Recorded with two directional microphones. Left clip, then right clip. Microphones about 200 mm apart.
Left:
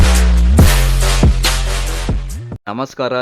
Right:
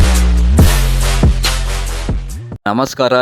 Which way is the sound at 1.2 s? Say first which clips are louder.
Left 1 dB; centre (ahead or behind).